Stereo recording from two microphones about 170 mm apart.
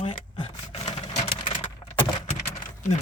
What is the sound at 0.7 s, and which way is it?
Vehicle, 35° left (ahead or behind).